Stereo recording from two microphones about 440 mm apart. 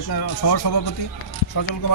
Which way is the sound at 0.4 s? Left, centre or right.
Left.